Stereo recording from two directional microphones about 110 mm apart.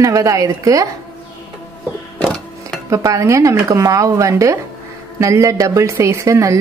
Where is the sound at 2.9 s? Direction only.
30° right (ahead or behind).